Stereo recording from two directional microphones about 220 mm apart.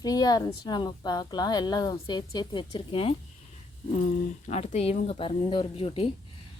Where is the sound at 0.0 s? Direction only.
15° left (ahead or behind).